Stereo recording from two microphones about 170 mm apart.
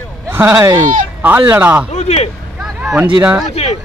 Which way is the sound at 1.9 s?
40° left (ahead or behind).